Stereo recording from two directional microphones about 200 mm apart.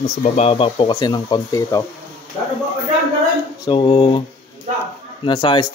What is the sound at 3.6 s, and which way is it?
Speech, 25° left (ahead or behind).